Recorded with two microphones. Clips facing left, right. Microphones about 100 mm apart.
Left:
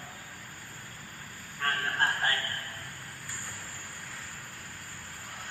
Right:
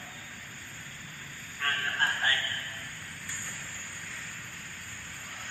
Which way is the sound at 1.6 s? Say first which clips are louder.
Left 2 dB; 30° left (ahead or behind).